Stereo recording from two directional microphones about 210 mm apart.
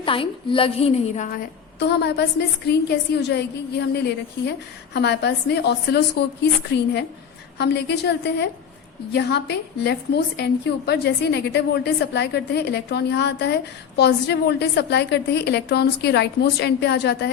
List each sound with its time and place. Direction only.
0.0 s a woman's voice: 25° left (ahead or behind)
1.8 s a woman's voice: 50° left (ahead or behind)
7.6 s a woman's voice: 55° left (ahead or behind)